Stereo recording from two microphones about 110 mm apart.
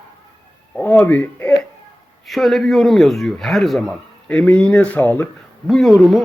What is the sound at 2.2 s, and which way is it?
Speech, centre (ahead or behind).